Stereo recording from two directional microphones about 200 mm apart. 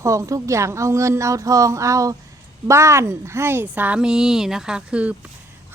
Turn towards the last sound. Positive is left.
turn(degrees=-5)  # may be behind; listen again after turning